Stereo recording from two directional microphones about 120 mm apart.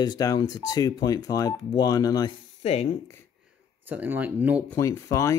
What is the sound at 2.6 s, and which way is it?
Speech, 60° left (ahead or behind).